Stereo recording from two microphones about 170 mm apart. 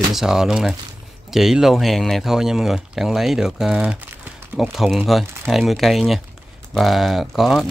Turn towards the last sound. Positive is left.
turn(degrees=0)  # may be behind; listen again after turning